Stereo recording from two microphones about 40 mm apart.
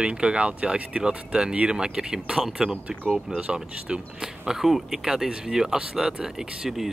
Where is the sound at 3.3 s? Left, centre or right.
Right.